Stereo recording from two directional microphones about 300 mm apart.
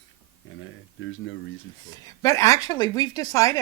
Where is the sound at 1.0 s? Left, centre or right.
Left.